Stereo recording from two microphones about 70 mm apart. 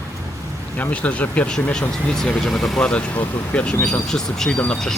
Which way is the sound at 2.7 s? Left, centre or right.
Centre.